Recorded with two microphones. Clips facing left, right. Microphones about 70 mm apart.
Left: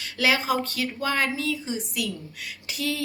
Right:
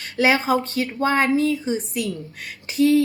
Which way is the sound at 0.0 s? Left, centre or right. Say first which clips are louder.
Right 5 dB; right.